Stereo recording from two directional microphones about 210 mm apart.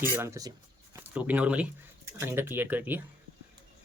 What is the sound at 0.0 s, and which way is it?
Speech, 10° right (ahead or behind).